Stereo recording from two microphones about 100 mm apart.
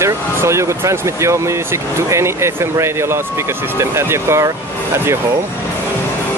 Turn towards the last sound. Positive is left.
turn(degrees=-25)  # may be behind; listen again after turning